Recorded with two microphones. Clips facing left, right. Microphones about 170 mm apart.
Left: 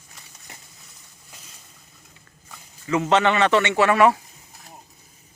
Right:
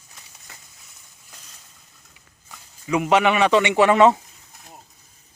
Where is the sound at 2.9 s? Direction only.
10° right (ahead or behind).